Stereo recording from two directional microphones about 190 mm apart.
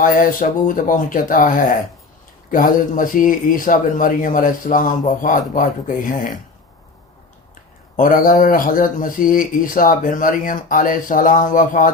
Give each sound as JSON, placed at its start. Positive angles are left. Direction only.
{"t": 0.0, "sound": "speech", "side_deg": 45}
{"t": 7.9, "sound": "speech", "side_deg": 45}